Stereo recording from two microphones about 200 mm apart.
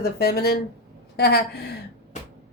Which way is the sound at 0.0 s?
50° left (ahead or behind).